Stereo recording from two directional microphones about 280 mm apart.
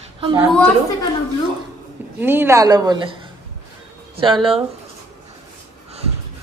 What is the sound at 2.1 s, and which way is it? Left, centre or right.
A woman's voice, centre.